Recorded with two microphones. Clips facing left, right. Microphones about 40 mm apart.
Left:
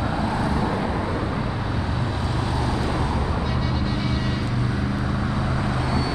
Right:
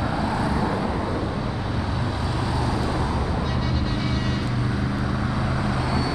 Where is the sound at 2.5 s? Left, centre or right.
Centre.